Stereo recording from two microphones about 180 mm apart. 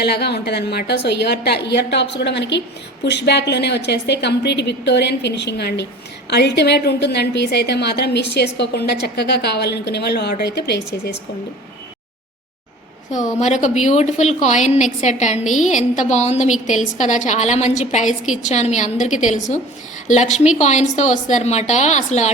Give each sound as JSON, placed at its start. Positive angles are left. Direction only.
{"t": 0.0, "sound": "a woman's voice", "side_deg": 65}
{"t": 13.4, "sound": "a woman's voice", "side_deg": 40}
{"t": 15.4, "sound": "a woman's voice", "side_deg": 0}
{"t": 16.0, "sound": "a woman's voice", "side_deg": 40}